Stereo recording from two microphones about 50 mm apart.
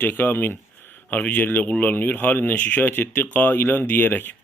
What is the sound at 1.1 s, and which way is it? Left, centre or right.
Speech, left.